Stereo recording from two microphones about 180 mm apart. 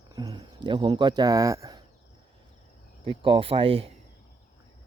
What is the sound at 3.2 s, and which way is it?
Speech, 30° right (ahead or behind).